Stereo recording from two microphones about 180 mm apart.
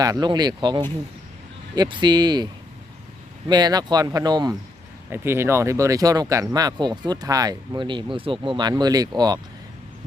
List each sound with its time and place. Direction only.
0.0 s speech: 20° right (ahead or behind)
3.5 s speech: 20° right (ahead or behind)